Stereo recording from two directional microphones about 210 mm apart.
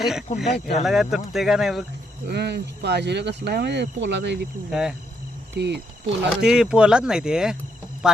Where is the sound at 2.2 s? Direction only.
50° right (ahead or behind).